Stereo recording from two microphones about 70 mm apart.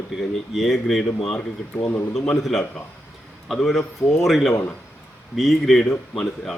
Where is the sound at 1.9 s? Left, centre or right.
Left.